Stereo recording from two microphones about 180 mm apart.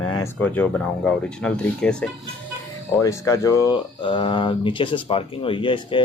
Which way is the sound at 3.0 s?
15° left (ahead or behind).